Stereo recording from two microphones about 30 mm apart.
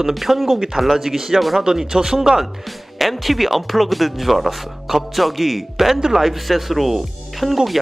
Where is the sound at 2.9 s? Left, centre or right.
Centre.